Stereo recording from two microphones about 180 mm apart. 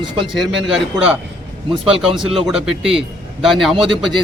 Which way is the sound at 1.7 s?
30° right (ahead or behind).